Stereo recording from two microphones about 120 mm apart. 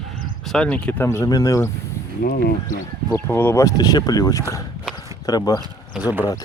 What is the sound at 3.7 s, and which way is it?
Speech, 30° left (ahead or behind).